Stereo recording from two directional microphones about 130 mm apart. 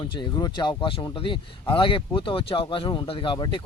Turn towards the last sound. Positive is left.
turn(degrees=35)  # may be behind; listen again after turning